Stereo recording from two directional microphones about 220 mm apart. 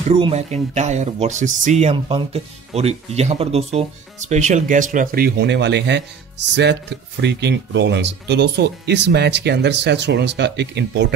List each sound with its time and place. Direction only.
0.1 s speech: 30° right (ahead or behind); by 11.1 s 50° right (ahead or behind)